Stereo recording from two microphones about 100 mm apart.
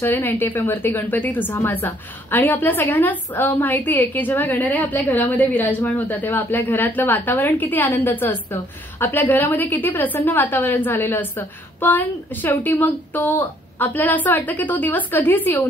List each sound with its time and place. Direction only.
0.0 s a woman's voice: 25° left (ahead or behind)